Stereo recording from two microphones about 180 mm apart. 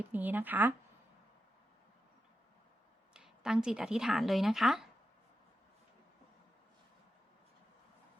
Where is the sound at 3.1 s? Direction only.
5° right (ahead or behind).